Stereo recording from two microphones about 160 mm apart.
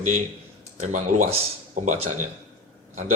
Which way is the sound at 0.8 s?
50° right (ahead or behind).